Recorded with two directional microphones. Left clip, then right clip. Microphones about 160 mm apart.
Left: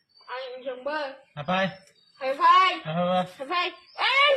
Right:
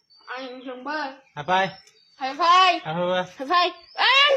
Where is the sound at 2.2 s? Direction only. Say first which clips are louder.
Right 1 dB; 75° right (ahead or behind).